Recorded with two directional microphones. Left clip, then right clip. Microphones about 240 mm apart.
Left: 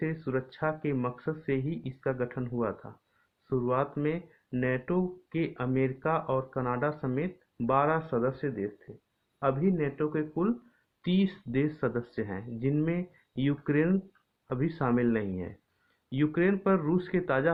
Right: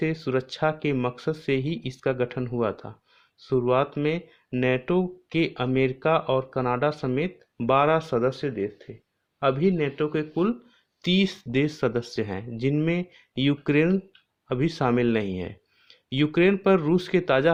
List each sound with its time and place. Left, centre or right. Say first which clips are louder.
0.0 s speech: right 6 dB; right